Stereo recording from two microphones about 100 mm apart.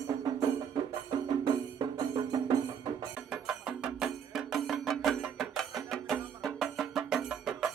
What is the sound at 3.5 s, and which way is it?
Music, 5° right (ahead or behind).